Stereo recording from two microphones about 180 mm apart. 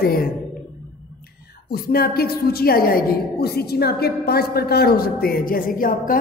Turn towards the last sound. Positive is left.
turn(degrees=50)  # may be behind; listen again after turning